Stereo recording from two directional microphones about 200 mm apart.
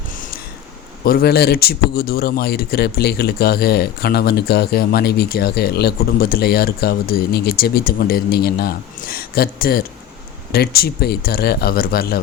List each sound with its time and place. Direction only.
1.0 s a man's voice: 50° left (ahead or behind)